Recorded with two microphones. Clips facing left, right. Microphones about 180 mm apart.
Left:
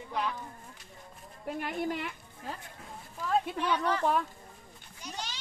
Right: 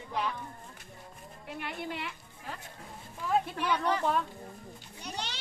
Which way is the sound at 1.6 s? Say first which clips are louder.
Left 4 dB; 45° left (ahead or behind).